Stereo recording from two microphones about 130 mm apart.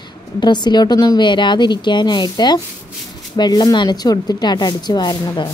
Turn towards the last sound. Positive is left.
turn(degrees=35)  # may be behind; listen again after turning